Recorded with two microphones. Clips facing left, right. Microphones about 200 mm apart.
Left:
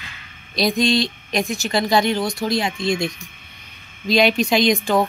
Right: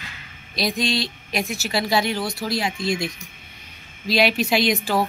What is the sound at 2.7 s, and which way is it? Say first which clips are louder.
Speech: left 3 dB; 25° left (ahead or behind).